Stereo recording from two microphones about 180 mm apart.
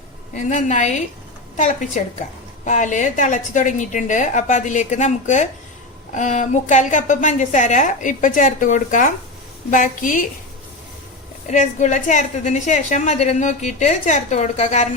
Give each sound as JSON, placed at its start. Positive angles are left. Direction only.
{"t": 0.3, "sound": "a woman's voice", "side_deg": 40}
{"t": 11.4, "sound": "a woman's voice", "side_deg": 40}